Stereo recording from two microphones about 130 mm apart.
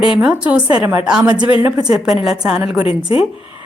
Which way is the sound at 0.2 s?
10° right (ahead or behind).